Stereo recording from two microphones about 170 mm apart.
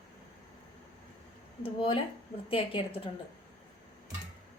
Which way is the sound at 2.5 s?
35° left (ahead or behind).